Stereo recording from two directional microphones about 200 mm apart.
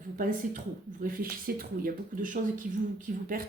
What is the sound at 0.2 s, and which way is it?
Speech, 40° right (ahead or behind).